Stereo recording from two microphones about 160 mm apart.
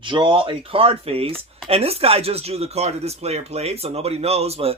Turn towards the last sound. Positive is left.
turn(degrees=-40)  # may be behind; listen again after turning